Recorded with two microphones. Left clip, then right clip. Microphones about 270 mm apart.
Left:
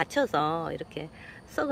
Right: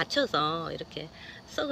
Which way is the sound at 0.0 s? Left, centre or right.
Centre.